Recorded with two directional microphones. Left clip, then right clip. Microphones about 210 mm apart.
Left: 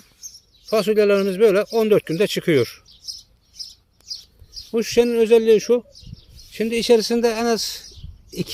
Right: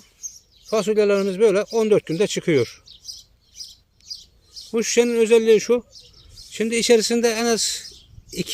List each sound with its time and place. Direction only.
0.7 s speech: centre (ahead or behind)
3.5 s bird: 45° right (ahead or behind)
4.7 s speech: 5° right (ahead or behind)